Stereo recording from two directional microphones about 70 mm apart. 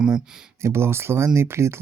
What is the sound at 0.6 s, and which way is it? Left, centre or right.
Speech, right.